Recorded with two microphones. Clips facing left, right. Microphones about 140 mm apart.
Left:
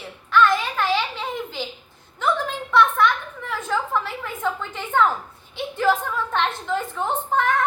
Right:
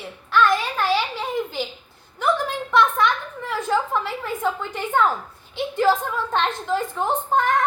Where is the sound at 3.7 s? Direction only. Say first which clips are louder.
Right 2 dB; 15° right (ahead or behind).